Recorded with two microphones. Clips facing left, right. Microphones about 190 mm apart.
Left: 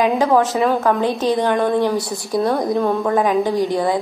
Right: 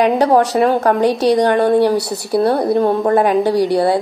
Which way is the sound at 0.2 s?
35° right (ahead or behind).